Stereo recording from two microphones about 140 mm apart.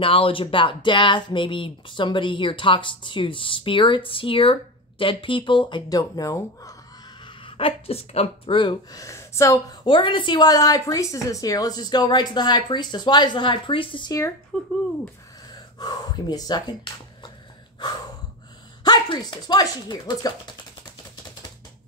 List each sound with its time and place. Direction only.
0.0 s speech: 40° left (ahead or behind); by 6.7 s 25° left (ahead or behind)
7.4 s speech: 40° left (ahead or behind)
9.0 s speech: 20° left (ahead or behind)
9.8 s speech: 35° left (ahead or behind)
14.5 s speech: 5° left (ahead or behind)
15.8 s speech: 30° left (ahead or behind)
18.9 s speech: 35° left (ahead or behind)